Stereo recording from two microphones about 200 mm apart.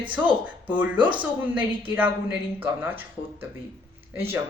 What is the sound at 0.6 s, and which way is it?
Speech, 5° right (ahead or behind).